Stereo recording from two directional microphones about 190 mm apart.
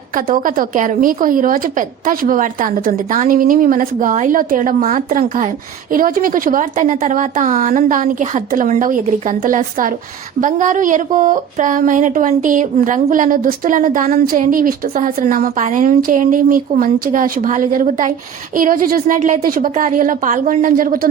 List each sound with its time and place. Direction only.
0.3 s speech: 45° right (ahead or behind)